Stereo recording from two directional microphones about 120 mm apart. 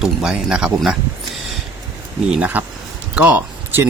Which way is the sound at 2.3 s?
10° right (ahead or behind).